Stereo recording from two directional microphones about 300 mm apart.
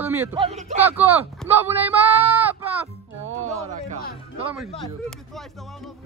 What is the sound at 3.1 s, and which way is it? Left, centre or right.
Music, right.